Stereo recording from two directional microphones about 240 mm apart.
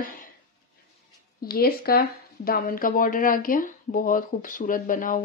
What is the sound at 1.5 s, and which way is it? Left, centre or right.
Speech, left.